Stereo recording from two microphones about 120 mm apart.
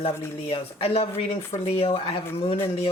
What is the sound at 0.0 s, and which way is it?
A man's voice, 50° left (ahead or behind).